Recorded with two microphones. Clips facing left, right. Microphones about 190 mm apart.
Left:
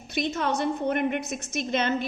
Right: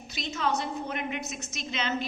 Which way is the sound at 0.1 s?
55° left (ahead or behind).